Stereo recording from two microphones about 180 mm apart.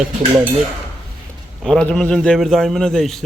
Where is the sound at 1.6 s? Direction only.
5° left (ahead or behind).